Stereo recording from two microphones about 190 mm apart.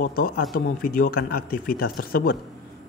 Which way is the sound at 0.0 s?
50° left (ahead or behind).